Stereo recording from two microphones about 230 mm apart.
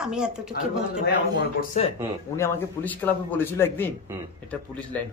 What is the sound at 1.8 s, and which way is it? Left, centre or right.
Speech, left.